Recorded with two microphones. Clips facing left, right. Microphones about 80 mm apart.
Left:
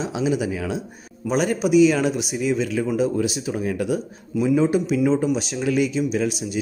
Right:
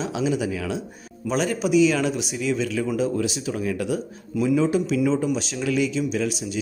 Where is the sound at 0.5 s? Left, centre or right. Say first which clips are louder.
Left 1 dB; left.